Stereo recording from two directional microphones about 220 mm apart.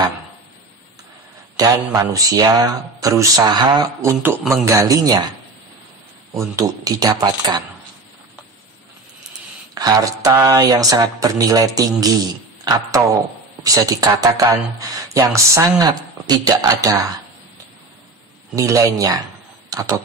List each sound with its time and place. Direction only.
1.6 s speech: 15° right (ahead or behind)
6.5 s speech: 15° right (ahead or behind)
9.8 s speech: 15° right (ahead or behind)
18.5 s speech: 15° right (ahead or behind)